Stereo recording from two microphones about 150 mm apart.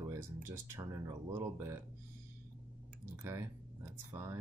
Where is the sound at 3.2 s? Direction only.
15° right (ahead or behind).